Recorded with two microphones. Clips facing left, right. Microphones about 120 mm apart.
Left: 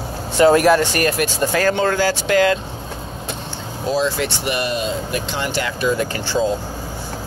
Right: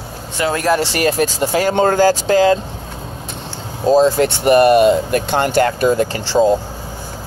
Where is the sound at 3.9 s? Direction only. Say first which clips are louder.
Right 8 dB; 40° right (ahead or behind).